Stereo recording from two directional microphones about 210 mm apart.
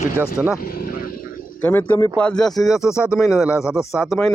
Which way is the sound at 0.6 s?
45° left (ahead or behind).